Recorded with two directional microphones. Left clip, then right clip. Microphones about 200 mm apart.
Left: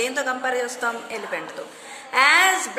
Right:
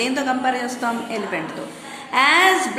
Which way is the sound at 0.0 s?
20° left (ahead or behind).